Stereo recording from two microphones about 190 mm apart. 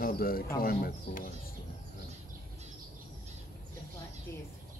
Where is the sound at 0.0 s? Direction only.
50° left (ahead or behind).